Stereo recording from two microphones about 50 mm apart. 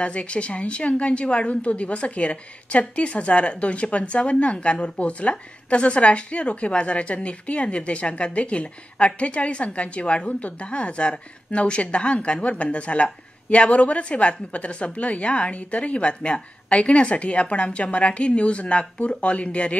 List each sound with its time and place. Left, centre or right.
0.0 s a woman's voice: left